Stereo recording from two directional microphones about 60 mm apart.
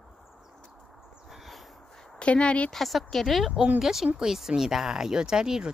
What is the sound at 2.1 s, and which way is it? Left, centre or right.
Speech, centre.